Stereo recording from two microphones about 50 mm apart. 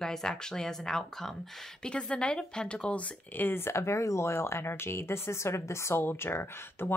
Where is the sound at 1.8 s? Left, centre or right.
Centre.